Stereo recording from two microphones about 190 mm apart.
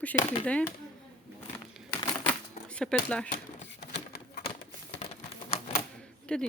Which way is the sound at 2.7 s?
5° left (ahead or behind).